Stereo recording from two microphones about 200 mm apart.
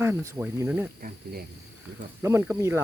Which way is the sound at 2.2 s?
15° right (ahead or behind).